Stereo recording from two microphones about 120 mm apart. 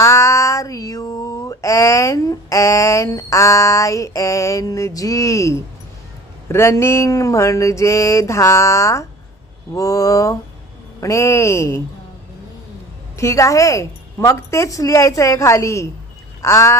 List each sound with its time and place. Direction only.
0.0 s mantra: 25° left (ahead or behind)
6.5 s a woman's voice: 20° left (ahead or behind)
13.1 s a woman's voice: 25° left (ahead or behind)